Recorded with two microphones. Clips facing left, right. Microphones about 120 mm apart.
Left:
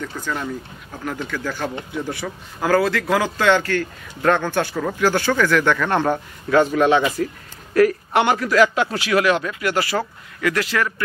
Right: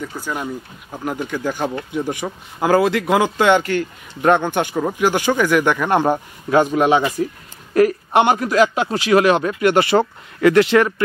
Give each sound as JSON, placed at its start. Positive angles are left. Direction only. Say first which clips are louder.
{"t": 0.0, "sound": "speech", "louder": "right 1 dB", "side_deg": -10}